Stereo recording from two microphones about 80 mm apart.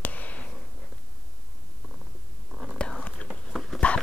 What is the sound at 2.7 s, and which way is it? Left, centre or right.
Whispering, centre.